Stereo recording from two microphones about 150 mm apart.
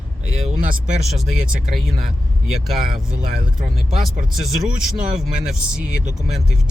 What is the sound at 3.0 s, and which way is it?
Speech, 60° right (ahead or behind).